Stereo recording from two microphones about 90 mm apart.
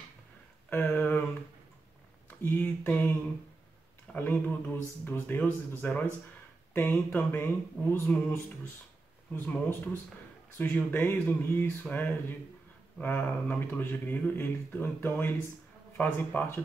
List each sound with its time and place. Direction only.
0.7 s a sound: 20° left (ahead or behind)
2.2 s speech: 20° left (ahead or behind)
4.1 s speech: 20° left (ahead or behind)